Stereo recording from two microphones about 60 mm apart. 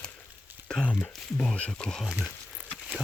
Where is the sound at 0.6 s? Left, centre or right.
Centre.